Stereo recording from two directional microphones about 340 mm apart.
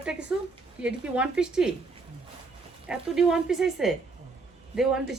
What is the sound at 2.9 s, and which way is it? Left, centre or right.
A woman's voice, centre.